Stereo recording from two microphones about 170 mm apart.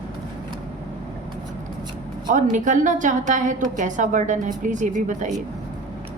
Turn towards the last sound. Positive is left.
turn(degrees=-45)  # may be behind; listen again after turning